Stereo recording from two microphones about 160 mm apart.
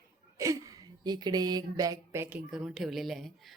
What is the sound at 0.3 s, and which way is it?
Speech, 20° right (ahead or behind).